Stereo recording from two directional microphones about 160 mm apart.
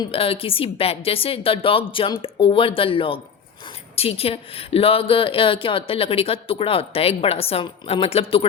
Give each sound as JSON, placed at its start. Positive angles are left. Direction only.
{"t": 0.0, "sound": "a woman's voice", "side_deg": 35}